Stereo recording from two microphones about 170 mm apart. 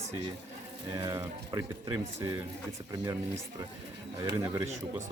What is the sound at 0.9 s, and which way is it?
Speech, 20° right (ahead or behind).